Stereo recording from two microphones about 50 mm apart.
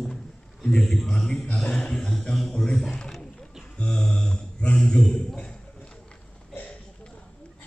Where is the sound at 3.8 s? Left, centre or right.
Centre.